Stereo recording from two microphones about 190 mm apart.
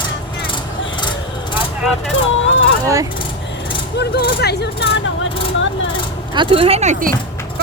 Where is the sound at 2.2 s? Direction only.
90° left.